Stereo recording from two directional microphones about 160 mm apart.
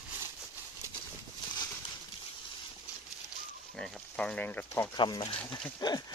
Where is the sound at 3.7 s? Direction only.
5° left (ahead or behind).